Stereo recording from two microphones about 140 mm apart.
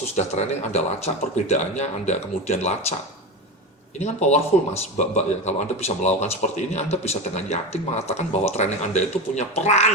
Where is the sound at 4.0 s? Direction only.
55° left (ahead or behind).